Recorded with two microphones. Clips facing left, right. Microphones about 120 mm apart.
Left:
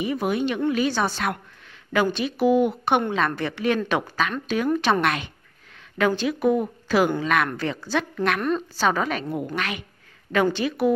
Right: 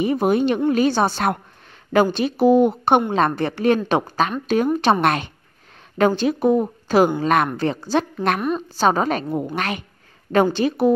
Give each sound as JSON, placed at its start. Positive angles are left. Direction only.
{"t": 0.0, "sound": "speech", "side_deg": -40}
{"t": 0.9, "sound": "speech", "side_deg": -30}
{"t": 8.4, "sound": "a woman's voice", "side_deg": -10}
{"t": 8.7, "sound": "speech", "side_deg": -35}